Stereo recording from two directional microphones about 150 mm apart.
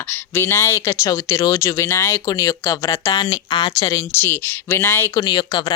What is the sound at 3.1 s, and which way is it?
Speech, 35° left (ahead or behind).